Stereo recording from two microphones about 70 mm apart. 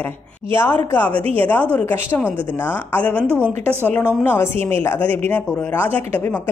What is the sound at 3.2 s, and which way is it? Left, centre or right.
Speech, right.